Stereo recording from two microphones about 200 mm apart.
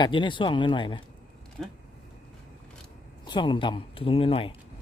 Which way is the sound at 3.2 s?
25° left (ahead or behind).